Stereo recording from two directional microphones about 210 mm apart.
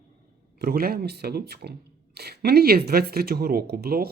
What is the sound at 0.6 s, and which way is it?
Speech, 45° right (ahead or behind).